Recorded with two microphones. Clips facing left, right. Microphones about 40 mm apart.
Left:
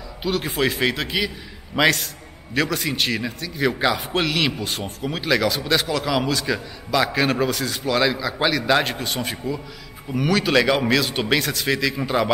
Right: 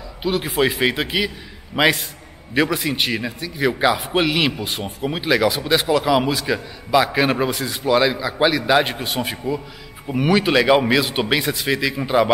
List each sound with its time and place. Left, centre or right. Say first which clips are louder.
0.2 s a man's voice: right 3 dB; centre
11.7 s a man's voice: right 3 dB; centre